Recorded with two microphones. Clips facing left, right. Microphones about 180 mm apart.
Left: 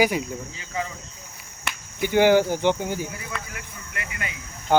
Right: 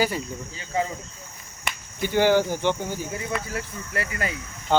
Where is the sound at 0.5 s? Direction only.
30° right (ahead or behind).